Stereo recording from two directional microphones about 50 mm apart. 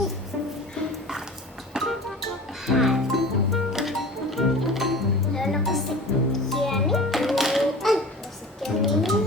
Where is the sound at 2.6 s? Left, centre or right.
Centre.